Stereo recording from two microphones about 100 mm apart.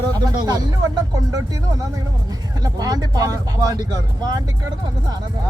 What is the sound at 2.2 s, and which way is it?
Speech, 40° right (ahead or behind).